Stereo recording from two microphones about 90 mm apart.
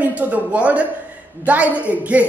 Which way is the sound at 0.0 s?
15° right (ahead or behind).